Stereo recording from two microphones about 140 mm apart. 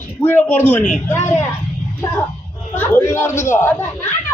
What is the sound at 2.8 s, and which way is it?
Speech, 15° left (ahead or behind).